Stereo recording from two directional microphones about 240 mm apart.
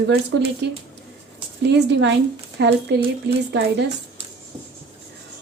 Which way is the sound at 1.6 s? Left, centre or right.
Right.